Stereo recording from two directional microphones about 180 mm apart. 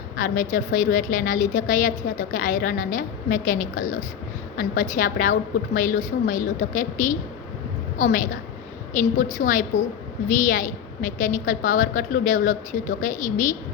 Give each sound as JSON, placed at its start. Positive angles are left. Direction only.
{"t": 0.2, "sound": "a woman's voice", "side_deg": 50}